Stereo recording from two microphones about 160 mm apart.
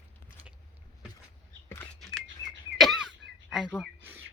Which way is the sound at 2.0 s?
5° left (ahead or behind).